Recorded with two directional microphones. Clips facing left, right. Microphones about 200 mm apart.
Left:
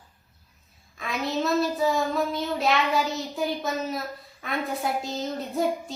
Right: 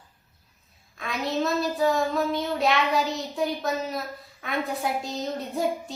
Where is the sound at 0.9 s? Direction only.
Centre (ahead or behind).